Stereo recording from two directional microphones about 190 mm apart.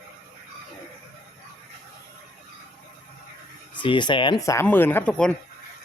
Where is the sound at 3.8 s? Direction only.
25° left (ahead or behind).